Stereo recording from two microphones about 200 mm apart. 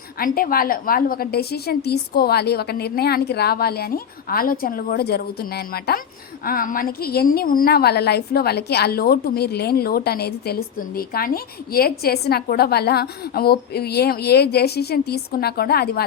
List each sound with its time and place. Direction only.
0.2 s a woman's voice: 45° left (ahead or behind)